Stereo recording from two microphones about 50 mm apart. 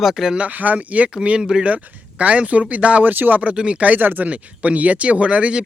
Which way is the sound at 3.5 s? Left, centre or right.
Right.